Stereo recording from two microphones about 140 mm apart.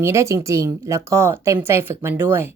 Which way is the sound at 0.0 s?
20° right (ahead or behind).